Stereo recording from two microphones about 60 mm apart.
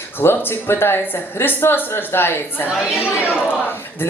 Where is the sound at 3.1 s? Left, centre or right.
Centre.